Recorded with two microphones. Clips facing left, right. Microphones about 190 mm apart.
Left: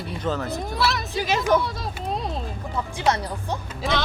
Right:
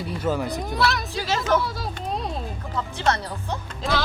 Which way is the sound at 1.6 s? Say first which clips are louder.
Even; centre (ahead or behind).